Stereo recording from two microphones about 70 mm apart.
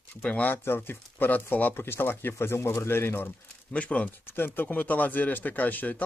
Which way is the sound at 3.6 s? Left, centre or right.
Centre.